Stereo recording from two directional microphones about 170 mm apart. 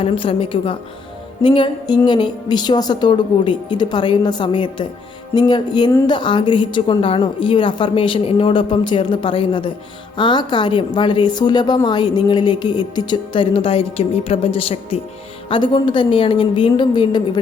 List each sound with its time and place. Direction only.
0.0 s a woman's voice: 30° left (ahead or behind)